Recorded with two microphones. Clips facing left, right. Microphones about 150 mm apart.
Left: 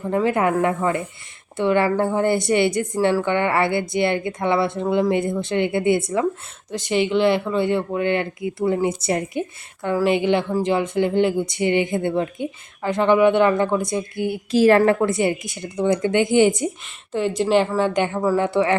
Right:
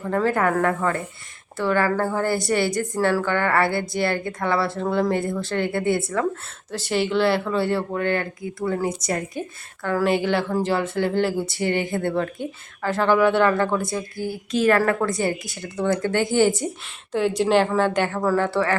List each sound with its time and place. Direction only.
0.0 s speech: 15° left (ahead or behind)
9.8 s speech: 15° left (ahead or behind)
14.3 s speech: 30° left (ahead or behind)
17.2 s a woman's voice: centre (ahead or behind); by 18.8 s 20° left (ahead or behind)